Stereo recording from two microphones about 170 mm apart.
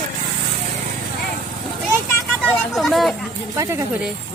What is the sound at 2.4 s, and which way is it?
Speech, centre (ahead or behind).